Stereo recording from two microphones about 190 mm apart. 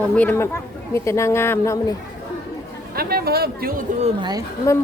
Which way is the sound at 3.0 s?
55° right (ahead or behind).